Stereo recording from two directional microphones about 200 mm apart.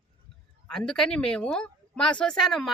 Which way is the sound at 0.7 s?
5° left (ahead or behind).